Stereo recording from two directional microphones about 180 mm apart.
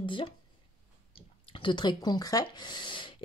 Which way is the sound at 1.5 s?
25° left (ahead or behind).